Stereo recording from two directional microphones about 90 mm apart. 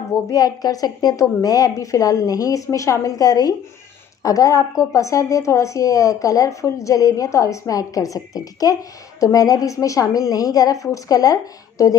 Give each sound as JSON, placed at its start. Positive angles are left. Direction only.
{"t": 0.3, "sound": "a woman's voice", "side_deg": 40}